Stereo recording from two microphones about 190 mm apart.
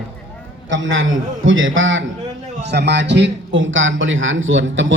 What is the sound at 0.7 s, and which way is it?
A man's voice, 90° right.